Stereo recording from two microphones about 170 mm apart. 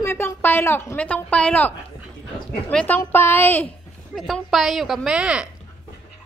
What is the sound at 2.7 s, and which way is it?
Speech, 10° left (ahead or behind).